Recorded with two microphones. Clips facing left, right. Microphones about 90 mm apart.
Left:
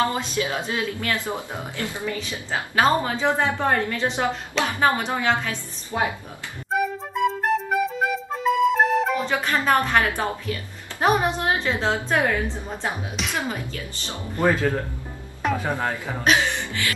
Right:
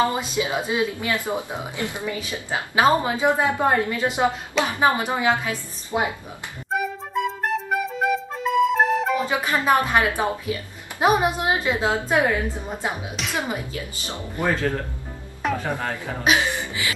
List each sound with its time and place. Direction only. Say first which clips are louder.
0.0 s a woman's voice: right 1 dB; 15° right (ahead or behind)
6.7 s music: left 1 dB; centre (ahead or behind)
9.3 s a woman's voice: right 1 dB; 15° right (ahead or behind)
13.1 s speech: even; centre (ahead or behind)
13.4 s a woman's voice: right 1 dB; 15° right (ahead or behind)
15.4 s music: even; centre (ahead or behind)
16.3 s speech: even; 15° right (ahead or behind)